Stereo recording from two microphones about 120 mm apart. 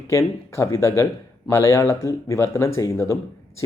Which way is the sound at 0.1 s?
25° left (ahead or behind).